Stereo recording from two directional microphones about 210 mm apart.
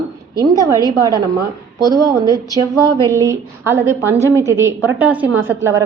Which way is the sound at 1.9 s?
15° right (ahead or behind).